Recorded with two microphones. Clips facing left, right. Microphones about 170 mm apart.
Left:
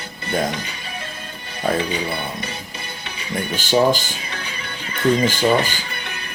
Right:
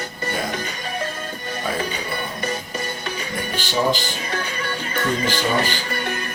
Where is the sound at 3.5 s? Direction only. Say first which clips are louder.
Left 5 dB; 45° left (ahead or behind).